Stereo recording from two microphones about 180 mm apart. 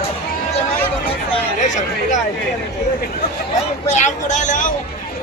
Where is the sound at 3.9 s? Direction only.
40° left (ahead or behind).